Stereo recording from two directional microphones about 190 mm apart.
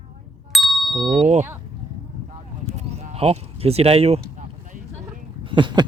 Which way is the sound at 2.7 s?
35° right (ahead or behind).